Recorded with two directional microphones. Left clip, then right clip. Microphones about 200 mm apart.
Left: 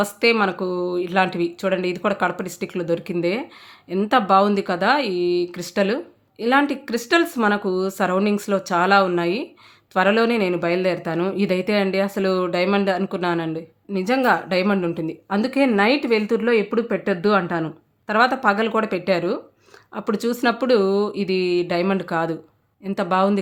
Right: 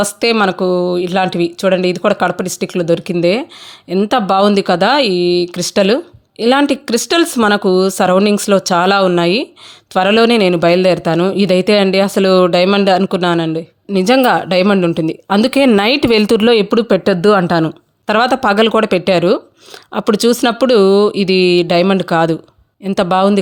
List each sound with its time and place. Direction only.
0.0 s speech: 30° right (ahead or behind)